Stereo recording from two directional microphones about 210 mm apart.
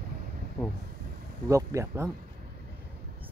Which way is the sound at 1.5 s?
15° right (ahead or behind).